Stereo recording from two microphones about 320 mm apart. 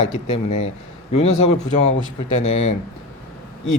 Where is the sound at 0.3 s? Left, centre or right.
Centre.